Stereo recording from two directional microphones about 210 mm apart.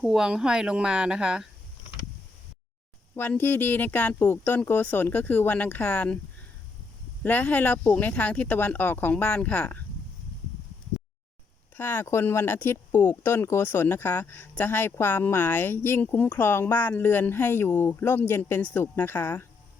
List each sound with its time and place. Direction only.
0.0 s speech: centre (ahead or behind)
3.2 s speech: 10° left (ahead or behind)
7.2 s speech: 5° left (ahead or behind)
11.8 s speech: 10° left (ahead or behind)